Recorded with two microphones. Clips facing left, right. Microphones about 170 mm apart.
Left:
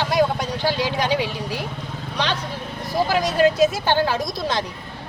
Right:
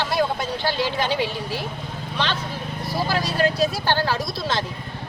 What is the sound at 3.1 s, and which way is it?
A woman's voice, 15° left (ahead or behind).